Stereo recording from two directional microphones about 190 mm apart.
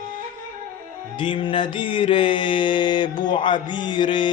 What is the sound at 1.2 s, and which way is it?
Mantra, 25° left (ahead or behind).